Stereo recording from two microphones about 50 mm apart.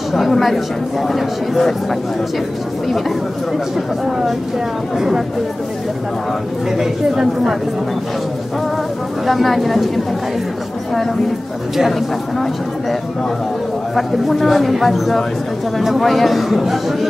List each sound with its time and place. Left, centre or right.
0.1 s speech: centre
4.9 s speech: centre
6.8 s speech: centre
9.2 s speech: centre
13.9 s speech: centre